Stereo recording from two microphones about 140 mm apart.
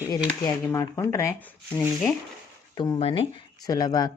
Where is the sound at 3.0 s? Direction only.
45° left (ahead or behind).